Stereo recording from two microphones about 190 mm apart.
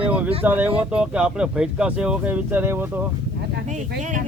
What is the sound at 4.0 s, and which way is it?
Speech, 40° right (ahead or behind).